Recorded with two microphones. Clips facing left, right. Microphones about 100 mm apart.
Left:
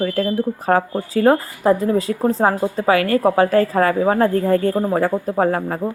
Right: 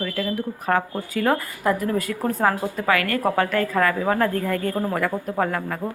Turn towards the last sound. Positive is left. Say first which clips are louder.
# left 6 dB
turn(degrees=35)  # may be behind; listen again after turning